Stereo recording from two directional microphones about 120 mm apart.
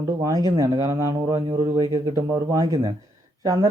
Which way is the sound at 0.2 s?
30° right (ahead or behind).